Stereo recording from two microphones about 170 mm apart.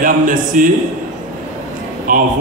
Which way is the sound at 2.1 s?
50° right (ahead or behind).